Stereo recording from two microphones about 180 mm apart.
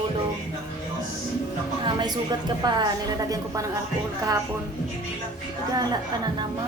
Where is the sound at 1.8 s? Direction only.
25° right (ahead or behind).